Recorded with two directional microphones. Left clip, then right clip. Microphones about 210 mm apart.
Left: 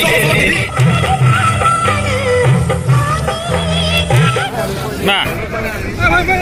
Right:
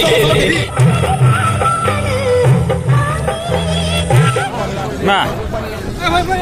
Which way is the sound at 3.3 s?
30° right (ahead or behind).